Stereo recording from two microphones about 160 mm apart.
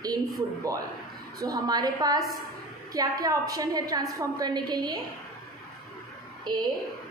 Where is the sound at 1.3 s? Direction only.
20° right (ahead or behind).